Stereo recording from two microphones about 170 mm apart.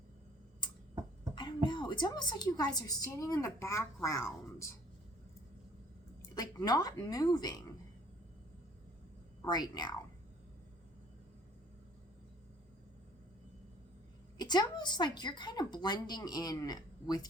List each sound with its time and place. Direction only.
1.6 s a woman's voice: 25° left (ahead or behind)
6.3 s a woman's voice: 20° left (ahead or behind)
9.4 s a woman's voice: 25° left (ahead or behind)
14.3 s a woman's voice: 25° left (ahead or behind)